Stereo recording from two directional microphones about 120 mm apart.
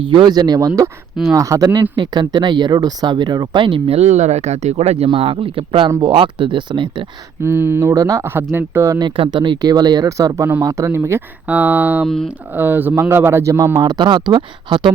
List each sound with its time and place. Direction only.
0.0 s speech: 45° right (ahead or behind)
3.9 s speech: 70° right (ahead or behind); by 6.9 s 40° right (ahead or behind)
7.4 s speech: 20° right (ahead or behind)
9.0 s speech: 45° right (ahead or behind); by 12.0 s 15° right (ahead or behind)
12.0 s speech: 5° left (ahead or behind)
12.5 s speech: 15° right (ahead or behind); by 14.9 s 45° right (ahead or behind)